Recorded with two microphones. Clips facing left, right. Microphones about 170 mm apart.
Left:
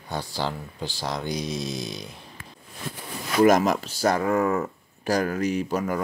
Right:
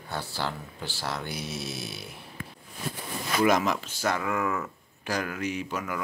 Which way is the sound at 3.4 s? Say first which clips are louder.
Left 6 dB; 45° left (ahead or behind).